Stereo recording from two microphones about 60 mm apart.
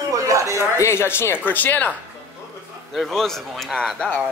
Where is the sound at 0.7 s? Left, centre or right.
Left.